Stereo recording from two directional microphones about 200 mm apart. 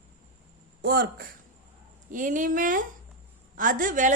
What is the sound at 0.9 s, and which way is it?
A woman's voice, 50° right (ahead or behind).